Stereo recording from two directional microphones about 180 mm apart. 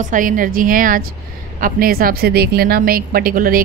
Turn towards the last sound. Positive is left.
turn(degrees=-55)  # may be behind; listen again after turning